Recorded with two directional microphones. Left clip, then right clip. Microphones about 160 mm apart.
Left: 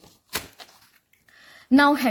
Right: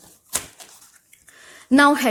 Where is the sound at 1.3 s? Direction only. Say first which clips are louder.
Right 3 dB; 25° right (ahead or behind).